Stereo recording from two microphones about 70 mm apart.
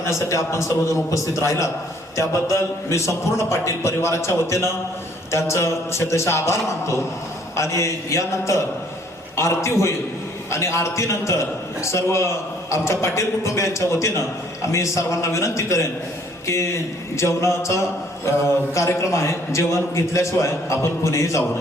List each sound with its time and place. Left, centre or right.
0.0 s a man's voice: left
17.2 s a man's voice: left